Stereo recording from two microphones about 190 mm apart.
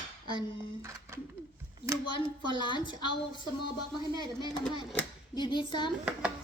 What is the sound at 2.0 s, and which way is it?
Speech, 25° left (ahead or behind).